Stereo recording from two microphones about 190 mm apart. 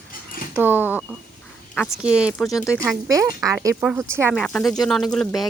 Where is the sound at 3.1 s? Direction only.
20° right (ahead or behind).